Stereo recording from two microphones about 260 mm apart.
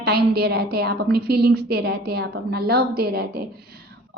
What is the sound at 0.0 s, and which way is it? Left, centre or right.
A woman's voice, right.